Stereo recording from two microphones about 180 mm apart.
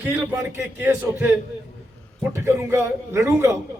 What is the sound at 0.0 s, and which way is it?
A man's voice, 10° right (ahead or behind).